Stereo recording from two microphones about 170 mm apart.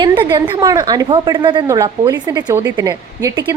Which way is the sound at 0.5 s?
20° right (ahead or behind).